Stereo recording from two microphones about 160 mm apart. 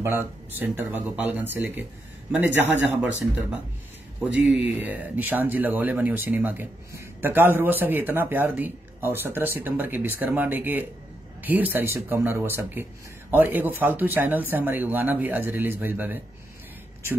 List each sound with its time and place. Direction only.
0.0 s speech: 15° right (ahead or behind)